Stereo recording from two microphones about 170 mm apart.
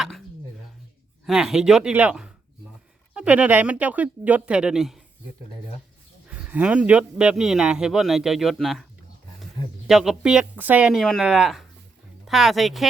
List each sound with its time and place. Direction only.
1.2 s a man's voice: centre (ahead or behind)
6.2 s a man's voice: 5° right (ahead or behind)